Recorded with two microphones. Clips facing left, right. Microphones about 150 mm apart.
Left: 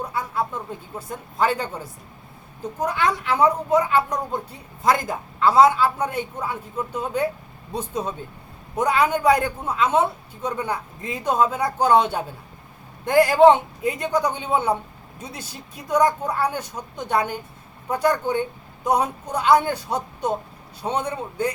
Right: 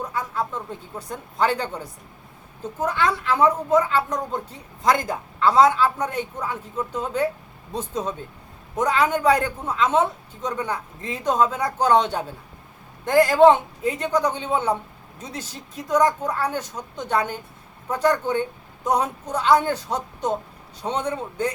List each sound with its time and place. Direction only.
0.0 s speech: 10° left (ahead or behind)
2.8 s a man's voice: 15° left (ahead or behind)